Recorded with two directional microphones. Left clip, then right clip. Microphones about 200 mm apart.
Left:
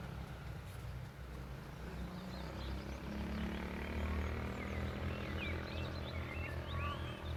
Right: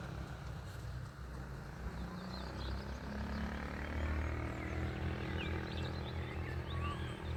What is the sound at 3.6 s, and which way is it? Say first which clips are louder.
Vehicle: even; 55° left (ahead or behind).